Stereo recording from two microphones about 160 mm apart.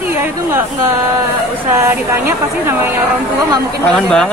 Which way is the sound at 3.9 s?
5° left (ahead or behind).